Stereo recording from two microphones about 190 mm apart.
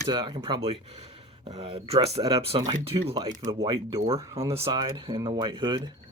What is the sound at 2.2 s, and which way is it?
Speech, 20° right (ahead or behind).